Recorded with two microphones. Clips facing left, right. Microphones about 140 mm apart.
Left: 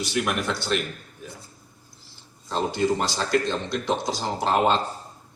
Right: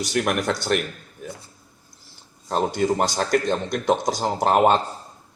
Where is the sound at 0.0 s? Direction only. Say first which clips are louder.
Right 3 dB; 50° right (ahead or behind).